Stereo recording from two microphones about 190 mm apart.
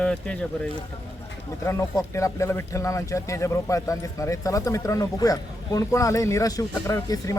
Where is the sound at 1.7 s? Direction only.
15° left (ahead or behind).